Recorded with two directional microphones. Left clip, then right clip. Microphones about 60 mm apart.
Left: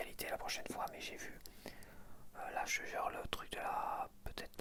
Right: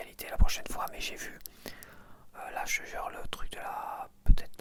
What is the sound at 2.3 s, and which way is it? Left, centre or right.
Speech, right.